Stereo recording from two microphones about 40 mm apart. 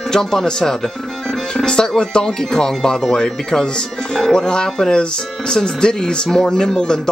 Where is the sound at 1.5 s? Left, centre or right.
Centre.